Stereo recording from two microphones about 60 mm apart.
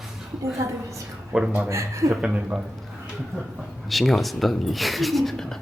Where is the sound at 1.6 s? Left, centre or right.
Right.